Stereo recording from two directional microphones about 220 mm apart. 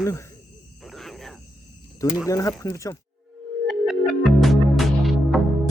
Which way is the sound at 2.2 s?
15° left (ahead or behind).